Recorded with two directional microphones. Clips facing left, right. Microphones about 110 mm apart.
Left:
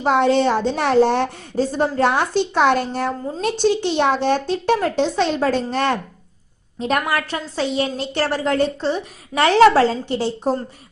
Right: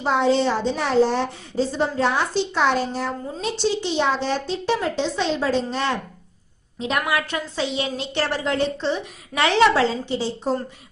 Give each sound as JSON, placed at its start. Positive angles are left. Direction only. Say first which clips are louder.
{"t": 0.0, "sound": "a woman's voice", "louder": "left 3 dB", "side_deg": 55}